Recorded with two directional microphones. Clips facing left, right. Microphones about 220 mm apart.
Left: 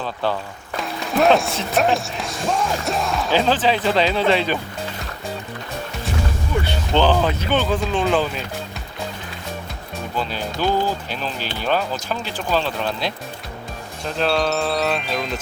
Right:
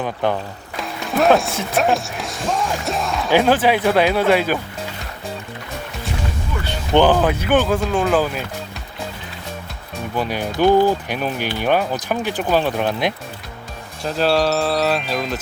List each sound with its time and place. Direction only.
0.0 s speech: 20° right (ahead or behind)
0.8 s music: centre (ahead or behind)
1.7 s speech: centre (ahead or behind)
3.2 s speech: 10° right (ahead or behind)
6.9 s speech: 15° right (ahead or behind)
10.2 s speech: 15° right (ahead or behind)
14.2 s speech: centre (ahead or behind)